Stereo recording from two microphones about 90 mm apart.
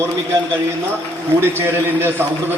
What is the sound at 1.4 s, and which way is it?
A man's voice, 25° right (ahead or behind).